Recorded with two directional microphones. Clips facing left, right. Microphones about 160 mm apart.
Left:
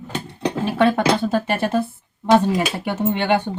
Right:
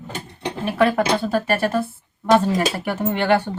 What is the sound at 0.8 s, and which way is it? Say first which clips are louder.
Speech: left 1 dB; 25° left (ahead or behind).